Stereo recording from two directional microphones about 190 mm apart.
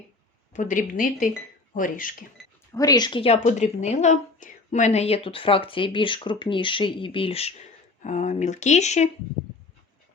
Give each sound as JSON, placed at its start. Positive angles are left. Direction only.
{"t": 0.5, "sound": "speech", "side_deg": 45}
{"t": 2.7, "sound": "a woman's voice", "side_deg": 20}